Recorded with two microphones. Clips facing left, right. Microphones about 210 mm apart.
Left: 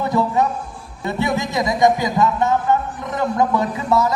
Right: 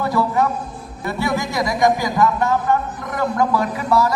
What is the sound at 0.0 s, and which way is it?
A man's voice, 20° left (ahead or behind).